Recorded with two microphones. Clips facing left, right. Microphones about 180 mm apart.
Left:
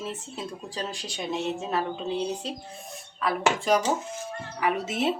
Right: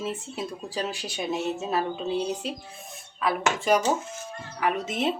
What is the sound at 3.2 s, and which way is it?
Speech, centre (ahead or behind).